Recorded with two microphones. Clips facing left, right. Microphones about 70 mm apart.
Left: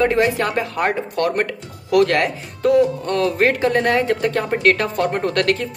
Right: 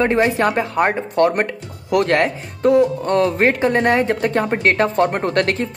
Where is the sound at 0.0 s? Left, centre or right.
Right.